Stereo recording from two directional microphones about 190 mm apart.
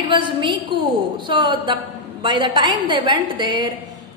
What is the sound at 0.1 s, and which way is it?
A woman's voice, 25° right (ahead or behind).